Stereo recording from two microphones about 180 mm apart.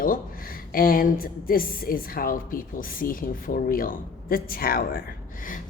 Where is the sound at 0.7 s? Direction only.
50° left (ahead or behind).